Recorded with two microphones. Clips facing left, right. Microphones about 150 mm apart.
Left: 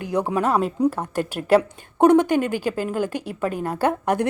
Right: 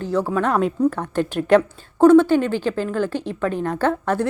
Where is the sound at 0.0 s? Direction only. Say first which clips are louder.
Right 1 dB; 15° left (ahead or behind).